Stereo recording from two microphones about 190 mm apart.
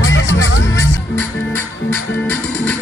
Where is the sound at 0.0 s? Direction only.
90° left.